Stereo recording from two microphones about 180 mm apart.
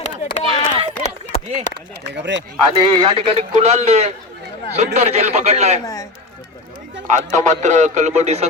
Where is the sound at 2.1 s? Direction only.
75° right (ahead or behind).